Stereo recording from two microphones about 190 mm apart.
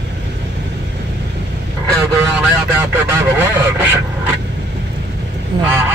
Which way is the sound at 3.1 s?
10° right (ahead or behind).